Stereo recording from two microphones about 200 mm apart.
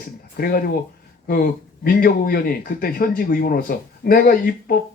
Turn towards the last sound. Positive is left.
turn(degrees=45)  # may be behind; listen again after turning